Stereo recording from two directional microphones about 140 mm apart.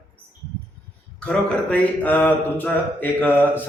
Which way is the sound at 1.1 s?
10° left (ahead or behind).